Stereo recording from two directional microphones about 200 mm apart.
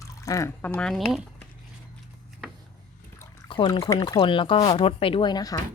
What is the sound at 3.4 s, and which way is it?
Speech, 25° left (ahead or behind).